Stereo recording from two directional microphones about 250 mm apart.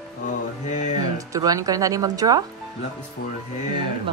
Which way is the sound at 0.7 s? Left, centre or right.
Left.